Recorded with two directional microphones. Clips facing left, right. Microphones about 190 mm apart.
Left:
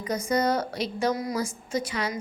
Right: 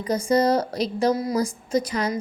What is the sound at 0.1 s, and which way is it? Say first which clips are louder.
A woman's voice: right 5 dB; 30° right (ahead or behind).